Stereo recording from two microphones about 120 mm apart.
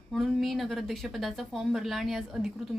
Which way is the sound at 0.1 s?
Centre (ahead or behind).